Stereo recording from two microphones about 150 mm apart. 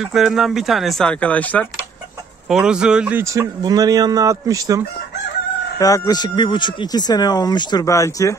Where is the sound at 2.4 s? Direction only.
5° right (ahead or behind); by 4.8 s 20° right (ahead or behind).